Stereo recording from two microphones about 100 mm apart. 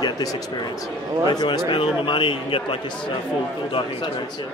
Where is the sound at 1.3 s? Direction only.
50° left (ahead or behind).